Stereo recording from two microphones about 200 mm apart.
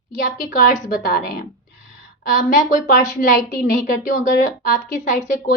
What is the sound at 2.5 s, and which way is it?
A woman's voice, 45° left (ahead or behind).